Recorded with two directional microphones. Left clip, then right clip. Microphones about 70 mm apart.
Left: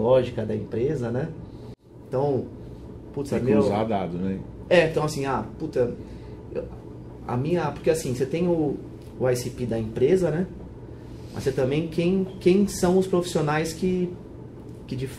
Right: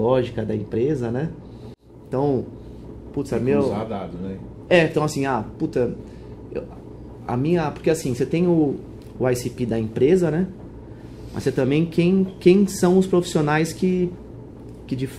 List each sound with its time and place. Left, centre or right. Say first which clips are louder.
0.0 s speech: even; right
3.5 s a man's voice: even; left
4.6 s speech: right 2 dB; right